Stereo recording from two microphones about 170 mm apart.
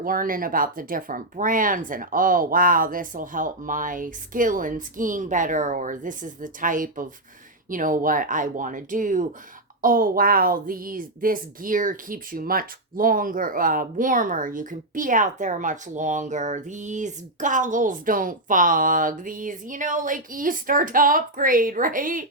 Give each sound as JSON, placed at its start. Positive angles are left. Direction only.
{"t": 0.0, "sound": "a woman's voice", "side_deg": -55}